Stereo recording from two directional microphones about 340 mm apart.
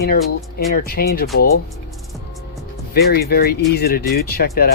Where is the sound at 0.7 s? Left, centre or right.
Left.